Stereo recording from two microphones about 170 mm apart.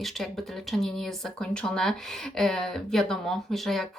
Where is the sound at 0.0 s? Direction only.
Centre (ahead or behind).